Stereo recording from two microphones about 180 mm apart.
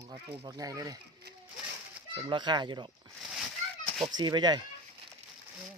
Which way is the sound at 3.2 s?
Centre (ahead or behind).